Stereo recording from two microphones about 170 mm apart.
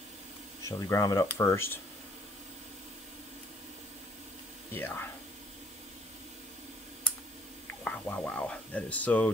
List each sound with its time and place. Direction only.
0.7 s speech: 20° left (ahead or behind)
4.7 s speech: 10° left (ahead or behind)
7.8 s speech: 10° left (ahead or behind)